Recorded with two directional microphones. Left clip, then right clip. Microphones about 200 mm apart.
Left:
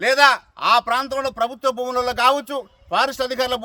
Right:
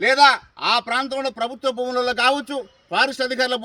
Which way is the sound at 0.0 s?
10° left (ahead or behind).